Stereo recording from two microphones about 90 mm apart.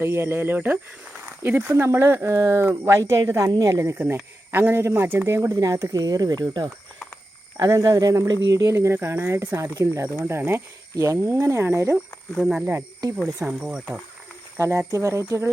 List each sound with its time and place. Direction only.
0.0 s speech: 25° right (ahead or behind)
3.9 s speech: 20° right (ahead or behind)
10.9 s speech: 35° right (ahead or behind)
12.4 s speech: 5° right (ahead or behind)
14.8 s speech: 35° right (ahead or behind)